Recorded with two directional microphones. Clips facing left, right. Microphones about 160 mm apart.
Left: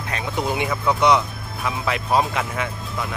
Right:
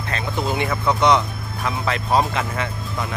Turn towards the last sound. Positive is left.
turn(degrees=5)  # may be behind; listen again after turning